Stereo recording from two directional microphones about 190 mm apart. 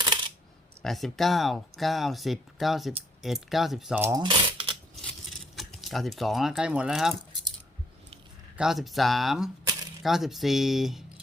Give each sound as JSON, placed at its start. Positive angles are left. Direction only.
{"t": 0.8, "sound": "speech", "side_deg": 0}
{"t": 4.0, "sound": "speech", "side_deg": -20}
{"t": 5.5, "sound": "speech", "side_deg": 0}
{"t": 8.5, "sound": "speech", "side_deg": 0}